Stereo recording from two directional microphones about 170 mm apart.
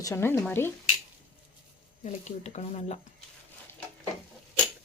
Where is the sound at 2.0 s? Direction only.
45° left (ahead or behind).